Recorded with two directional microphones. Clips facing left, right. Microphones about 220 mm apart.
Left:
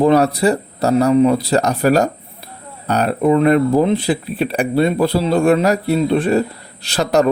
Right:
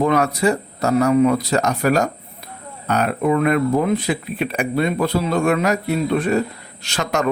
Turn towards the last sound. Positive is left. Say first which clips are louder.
# left 7 dB
turn(degrees=35)  # may be behind; listen again after turning